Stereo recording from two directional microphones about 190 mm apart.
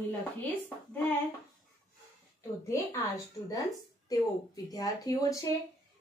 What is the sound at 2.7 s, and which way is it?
A woman's voice, 15° left (ahead or behind).